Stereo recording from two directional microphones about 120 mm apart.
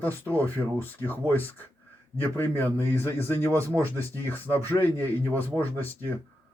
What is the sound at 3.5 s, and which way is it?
Speech, 25° right (ahead or behind).